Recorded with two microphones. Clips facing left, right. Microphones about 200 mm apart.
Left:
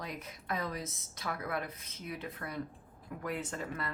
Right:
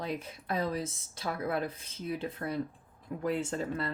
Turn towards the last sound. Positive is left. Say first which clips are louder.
# right 6 dB
turn(degrees=-30)  # may be behind; listen again after turning